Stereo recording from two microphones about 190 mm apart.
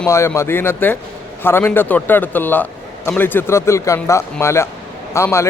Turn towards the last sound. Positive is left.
turn(degrees=15)  # may be behind; listen again after turning